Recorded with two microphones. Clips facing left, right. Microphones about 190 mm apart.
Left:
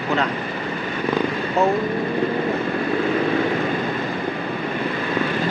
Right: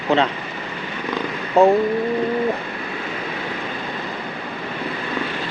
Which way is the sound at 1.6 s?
35° right (ahead or behind).